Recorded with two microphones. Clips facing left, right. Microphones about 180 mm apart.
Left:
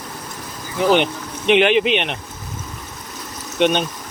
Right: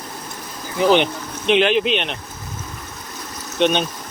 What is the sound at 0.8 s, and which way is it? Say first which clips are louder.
Speech: right 1 dB; 5° left (ahead or behind).